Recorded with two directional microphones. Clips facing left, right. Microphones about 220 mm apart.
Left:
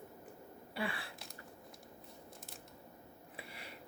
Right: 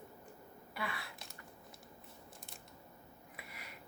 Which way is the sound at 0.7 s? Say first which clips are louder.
Left 3 dB; 30° left (ahead or behind).